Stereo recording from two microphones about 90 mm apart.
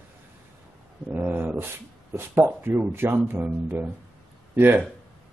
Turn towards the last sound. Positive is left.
turn(degrees=-25)  # may be behind; listen again after turning